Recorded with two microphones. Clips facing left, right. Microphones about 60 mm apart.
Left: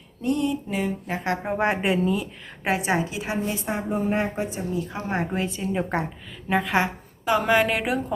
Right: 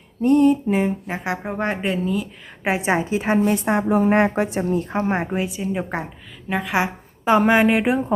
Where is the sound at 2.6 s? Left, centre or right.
Right.